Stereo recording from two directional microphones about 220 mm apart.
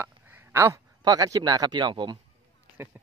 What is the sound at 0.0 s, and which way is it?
Speech, 10° right (ahead or behind).